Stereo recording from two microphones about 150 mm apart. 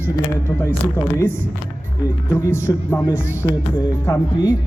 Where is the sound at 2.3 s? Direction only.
15° left (ahead or behind).